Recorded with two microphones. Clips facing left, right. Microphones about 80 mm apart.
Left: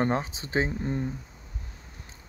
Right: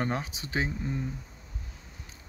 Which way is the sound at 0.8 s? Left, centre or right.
Left.